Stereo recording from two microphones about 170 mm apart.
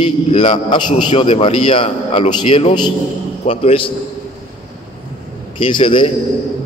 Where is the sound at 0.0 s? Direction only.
35° left (ahead or behind).